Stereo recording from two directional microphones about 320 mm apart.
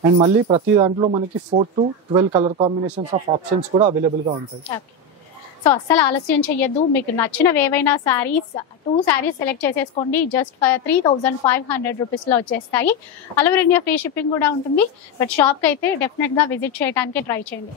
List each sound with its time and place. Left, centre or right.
0.0 s speech: centre
5.6 s a woman's voice: centre